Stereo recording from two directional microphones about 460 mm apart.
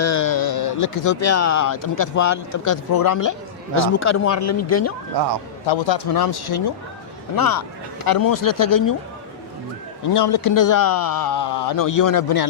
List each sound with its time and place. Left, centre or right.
0.0 s a sound: left
1.0 s speech: left
5.6 s a man's voice: left
6.1 s speech: left
10.0 s speech: left